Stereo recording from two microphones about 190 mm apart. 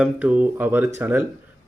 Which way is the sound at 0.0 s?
10° right (ahead or behind).